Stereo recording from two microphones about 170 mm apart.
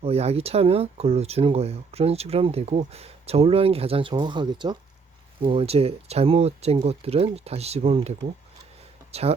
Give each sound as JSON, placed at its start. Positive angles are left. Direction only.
{"t": 0.0, "sound": "speech", "side_deg": -35}